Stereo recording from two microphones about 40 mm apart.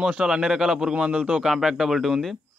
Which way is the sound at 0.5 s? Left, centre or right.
Centre.